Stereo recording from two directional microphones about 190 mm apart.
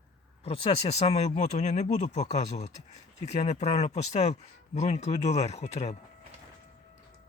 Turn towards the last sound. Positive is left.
turn(degrees=35)  # may be behind; listen again after turning